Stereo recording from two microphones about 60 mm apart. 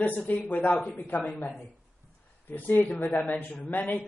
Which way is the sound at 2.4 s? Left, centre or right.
Left.